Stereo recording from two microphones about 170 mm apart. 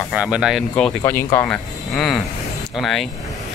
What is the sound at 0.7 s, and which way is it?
Speech, 15° left (ahead or behind).